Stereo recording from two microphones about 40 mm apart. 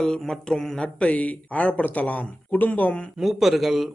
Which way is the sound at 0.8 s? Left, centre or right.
Left.